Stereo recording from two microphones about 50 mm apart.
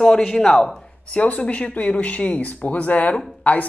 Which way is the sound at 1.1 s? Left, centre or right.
Left.